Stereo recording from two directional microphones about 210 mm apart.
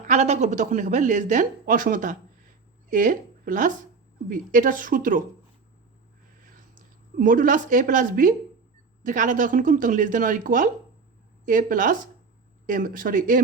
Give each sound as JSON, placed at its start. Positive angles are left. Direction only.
{"t": 0.1, "sound": "speech", "side_deg": -30}
{"t": 6.4, "sound": "a woman's voice", "side_deg": -40}